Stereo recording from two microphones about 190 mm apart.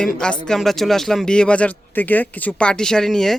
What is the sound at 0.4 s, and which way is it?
A woman's voice, centre (ahead or behind).